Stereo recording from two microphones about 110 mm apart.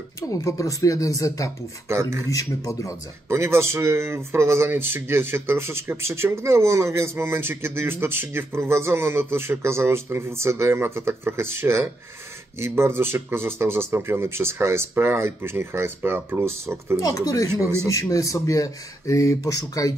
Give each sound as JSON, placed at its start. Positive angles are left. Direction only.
{"t": 0.3, "sound": "speech", "side_deg": 30}
{"t": 1.9, "sound": "speech", "side_deg": -25}
{"t": 2.3, "sound": "speech", "side_deg": 30}
{"t": 3.3, "sound": "speech", "side_deg": -25}
{"t": 17.0, "sound": "speech", "side_deg": 30}